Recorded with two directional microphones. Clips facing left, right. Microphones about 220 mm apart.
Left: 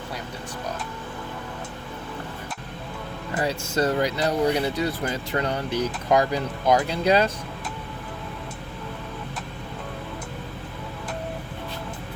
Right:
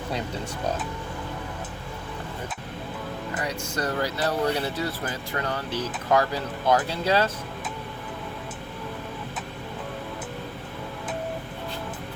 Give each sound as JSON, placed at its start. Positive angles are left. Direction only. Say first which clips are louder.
{"t": 3.3, "sound": "speech", "louder": "left 7 dB", "side_deg": 25}